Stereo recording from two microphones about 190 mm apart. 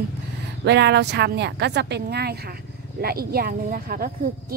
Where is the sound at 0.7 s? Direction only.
65° right (ahead or behind).